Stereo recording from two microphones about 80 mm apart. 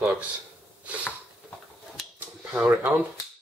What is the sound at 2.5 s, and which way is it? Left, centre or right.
Speech, right.